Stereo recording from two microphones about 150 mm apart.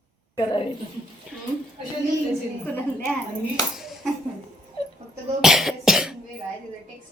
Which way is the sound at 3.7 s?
Centre (ahead or behind).